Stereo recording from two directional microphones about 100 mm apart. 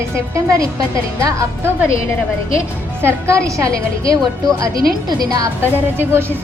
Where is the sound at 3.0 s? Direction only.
25° right (ahead or behind); by 5.5 s 40° right (ahead or behind).